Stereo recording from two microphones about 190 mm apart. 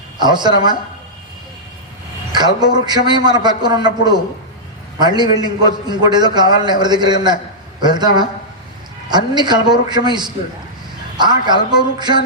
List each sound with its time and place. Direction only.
0.2 s a man's voice: 25° right (ahead or behind)
2.3 s a man's voice: 20° right (ahead or behind)